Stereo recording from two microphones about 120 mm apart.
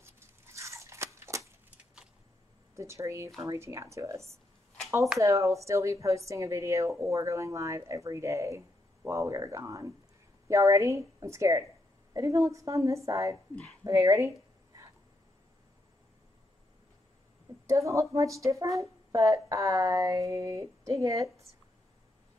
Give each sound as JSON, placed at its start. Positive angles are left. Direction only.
{"t": 0.0, "sound": "a sound", "side_deg": -20}
{"t": 2.7, "sound": "a woman's voice", "side_deg": -25}
{"t": 17.6, "sound": "a woman's voice", "side_deg": -25}